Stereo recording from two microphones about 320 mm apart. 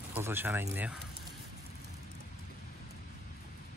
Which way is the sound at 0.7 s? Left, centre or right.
Centre.